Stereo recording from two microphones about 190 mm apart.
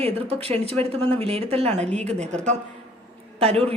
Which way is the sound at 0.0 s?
30° right (ahead or behind).